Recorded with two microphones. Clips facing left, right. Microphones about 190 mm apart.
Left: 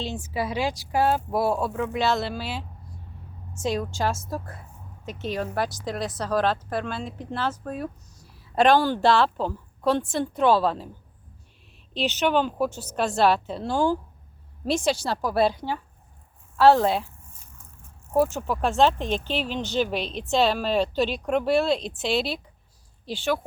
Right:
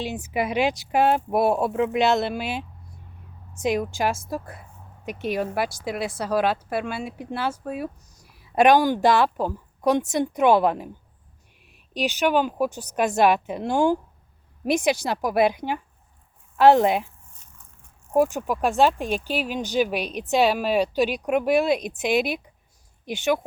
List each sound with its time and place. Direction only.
0.0 s a woman's voice: 15° right (ahead or behind)
11.9 s a woman's voice: 10° right (ahead or behind)
18.1 s a woman's voice: 15° right (ahead or behind)